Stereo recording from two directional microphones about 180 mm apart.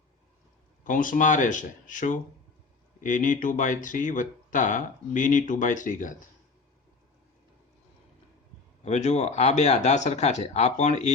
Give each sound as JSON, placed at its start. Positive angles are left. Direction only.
{"t": 0.9, "sound": "speech", "side_deg": 50}
{"t": 8.8, "sound": "speech", "side_deg": 40}